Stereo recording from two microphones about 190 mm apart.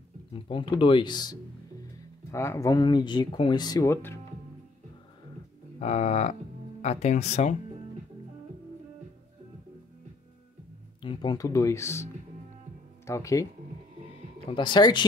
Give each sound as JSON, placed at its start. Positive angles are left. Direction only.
{"t": 0.3, "sound": "speech", "side_deg": 25}
{"t": 5.8, "sound": "speech", "side_deg": 35}
{"t": 11.0, "sound": "speech", "side_deg": 25}
{"t": 14.5, "sound": "speech", "side_deg": 25}